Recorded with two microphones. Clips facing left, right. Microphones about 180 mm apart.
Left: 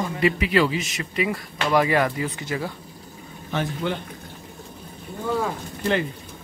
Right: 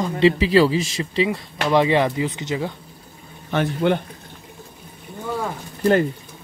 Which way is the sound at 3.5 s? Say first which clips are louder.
Right 6 dB; 60° right (ahead or behind).